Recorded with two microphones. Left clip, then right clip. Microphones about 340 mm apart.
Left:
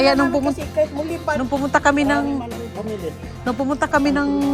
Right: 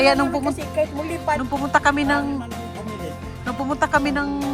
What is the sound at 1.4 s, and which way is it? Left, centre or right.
Speech, centre.